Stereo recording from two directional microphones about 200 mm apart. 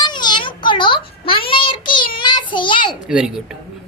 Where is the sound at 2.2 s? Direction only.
25° left (ahead or behind).